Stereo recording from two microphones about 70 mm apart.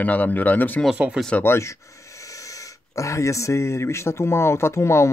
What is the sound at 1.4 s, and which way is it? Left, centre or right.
Speech, left.